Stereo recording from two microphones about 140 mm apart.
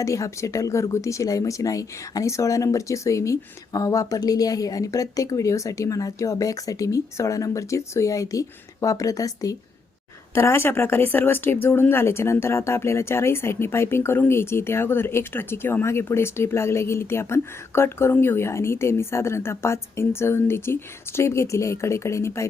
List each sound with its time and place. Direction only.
0.0 s speech: 20° left (ahead or behind)